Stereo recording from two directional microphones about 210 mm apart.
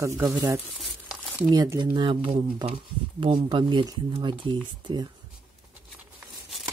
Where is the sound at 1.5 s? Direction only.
15° right (ahead or behind).